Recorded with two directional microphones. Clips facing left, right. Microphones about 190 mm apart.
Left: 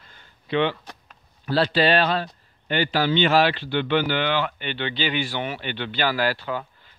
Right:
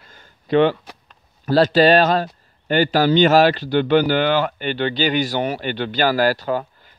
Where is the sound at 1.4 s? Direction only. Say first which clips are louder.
Right 7 dB; 45° right (ahead or behind).